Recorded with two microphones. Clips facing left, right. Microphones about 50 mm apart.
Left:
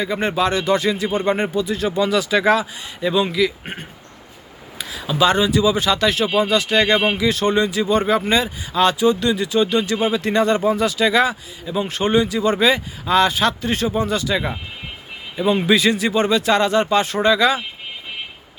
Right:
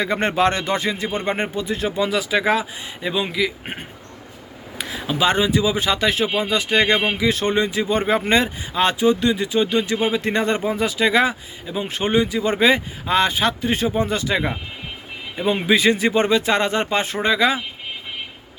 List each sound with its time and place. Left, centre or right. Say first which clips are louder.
0.0 s speech: right 1 dB; right
1.9 s speech: left 3 dB; centre
4.8 s a sound: right 2 dB; right
5.0 s speech: left 2 dB; right
8.7 s speech: left 2 dB; right